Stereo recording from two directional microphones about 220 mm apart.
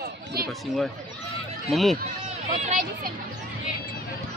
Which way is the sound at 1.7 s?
Centre (ahead or behind).